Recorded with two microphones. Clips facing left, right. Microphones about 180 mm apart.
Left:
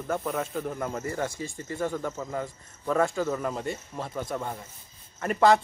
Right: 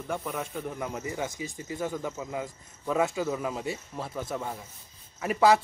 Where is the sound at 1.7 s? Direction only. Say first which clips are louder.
Left 2 dB; 5° right (ahead or behind).